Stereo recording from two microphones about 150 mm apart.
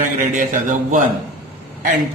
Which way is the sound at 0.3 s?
60° right (ahead or behind).